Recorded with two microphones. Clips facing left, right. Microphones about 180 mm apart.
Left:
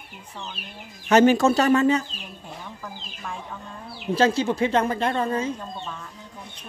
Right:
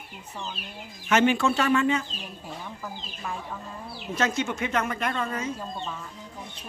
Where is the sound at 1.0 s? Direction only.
40° left (ahead or behind).